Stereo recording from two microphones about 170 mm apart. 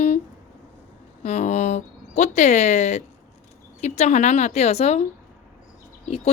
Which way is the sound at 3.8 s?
45° left (ahead or behind).